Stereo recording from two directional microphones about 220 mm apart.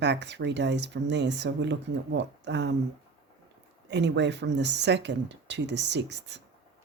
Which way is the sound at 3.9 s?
50° right (ahead or behind).